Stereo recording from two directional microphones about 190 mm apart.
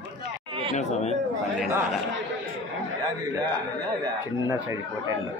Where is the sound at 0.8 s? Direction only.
35° left (ahead or behind).